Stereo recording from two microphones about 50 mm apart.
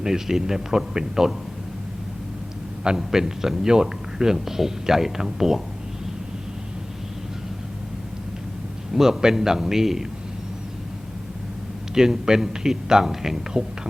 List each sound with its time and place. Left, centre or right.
0.0 s a man's voice: centre
2.8 s a man's voice: centre
8.9 s a man's voice: centre
11.9 s a man's voice: centre